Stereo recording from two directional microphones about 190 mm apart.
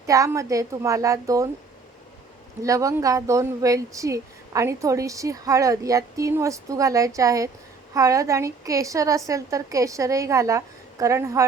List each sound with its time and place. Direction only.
0.0 s speech: 15° right (ahead or behind)
2.6 s speech: 15° right (ahead or behind)